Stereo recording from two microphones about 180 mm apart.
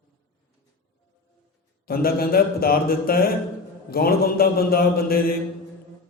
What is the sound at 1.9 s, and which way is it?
A man's voice, 55° left (ahead or behind).